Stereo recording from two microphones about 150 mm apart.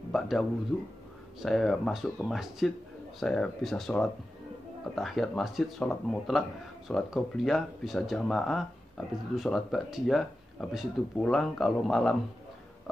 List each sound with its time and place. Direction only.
0.1 s speech: centre (ahead or behind)